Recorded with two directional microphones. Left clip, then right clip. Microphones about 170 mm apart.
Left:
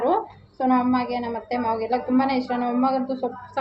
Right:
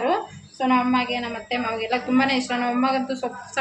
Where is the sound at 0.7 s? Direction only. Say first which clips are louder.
Right 1 dB; 10° left (ahead or behind).